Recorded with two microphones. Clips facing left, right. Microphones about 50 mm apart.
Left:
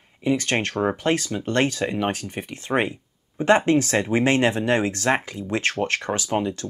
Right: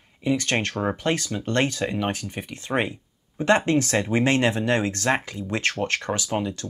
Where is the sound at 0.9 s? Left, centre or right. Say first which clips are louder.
Left 2 dB; left.